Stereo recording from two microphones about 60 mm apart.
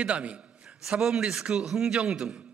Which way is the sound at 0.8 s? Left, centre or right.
Centre.